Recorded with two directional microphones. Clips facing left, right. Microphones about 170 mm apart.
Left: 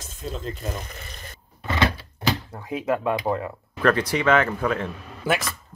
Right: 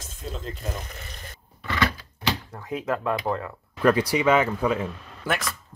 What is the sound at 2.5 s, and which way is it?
Speech, 10° left (ahead or behind).